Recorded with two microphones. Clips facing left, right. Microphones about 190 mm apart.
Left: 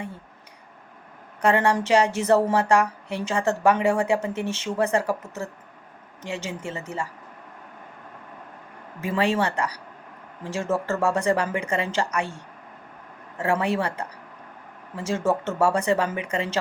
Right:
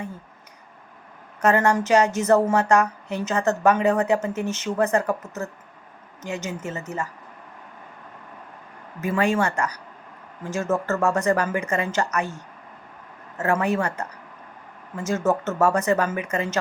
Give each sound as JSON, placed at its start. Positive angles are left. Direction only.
{"t": 1.4, "sound": "speech", "side_deg": 30}
{"t": 6.2, "sound": "speech", "side_deg": 30}
{"t": 9.0, "sound": "speech", "side_deg": 30}
{"t": 13.6, "sound": "speech", "side_deg": 30}